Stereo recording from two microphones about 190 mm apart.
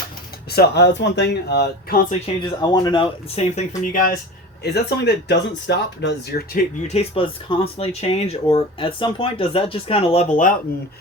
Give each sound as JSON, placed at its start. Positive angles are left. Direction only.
{"t": 0.5, "sound": "speech", "side_deg": 60}
{"t": 2.0, "sound": "speech", "side_deg": 30}
{"t": 4.6, "sound": "speech", "side_deg": 60}
{"t": 6.8, "sound": "speech", "side_deg": 30}